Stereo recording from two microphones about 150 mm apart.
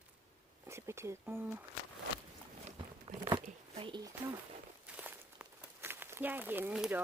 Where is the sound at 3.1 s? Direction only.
35° right (ahead or behind).